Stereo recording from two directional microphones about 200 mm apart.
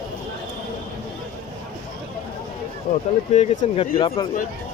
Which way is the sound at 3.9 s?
25° left (ahead or behind).